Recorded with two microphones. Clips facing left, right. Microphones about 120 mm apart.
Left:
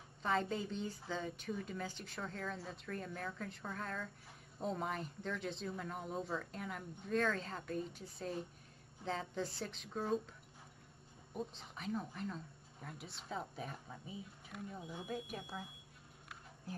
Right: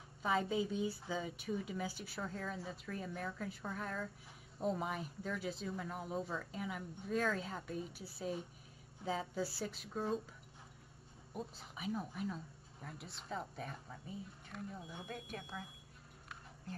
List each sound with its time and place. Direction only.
0.2 s speech: 5° right (ahead or behind)
11.3 s speech: 5° right (ahead or behind); by 15.6 s 15° left (ahead or behind)